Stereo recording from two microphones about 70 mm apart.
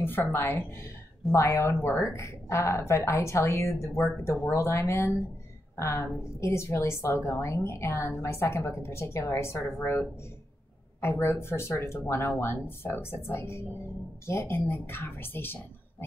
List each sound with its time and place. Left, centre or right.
0.0 s speech: left
1.3 s a woman's voice: left
11.0 s speech: left